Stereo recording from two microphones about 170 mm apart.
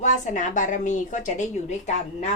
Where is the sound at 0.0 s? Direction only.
45° left (ahead or behind).